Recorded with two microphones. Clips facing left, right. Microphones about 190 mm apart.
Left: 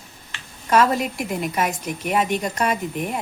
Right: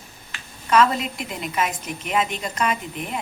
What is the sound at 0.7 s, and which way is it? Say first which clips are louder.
Speech: left 1 dB; 45° left (ahead or behind).